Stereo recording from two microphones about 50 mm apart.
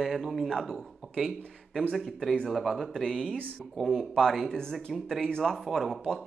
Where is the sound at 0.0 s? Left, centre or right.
Centre.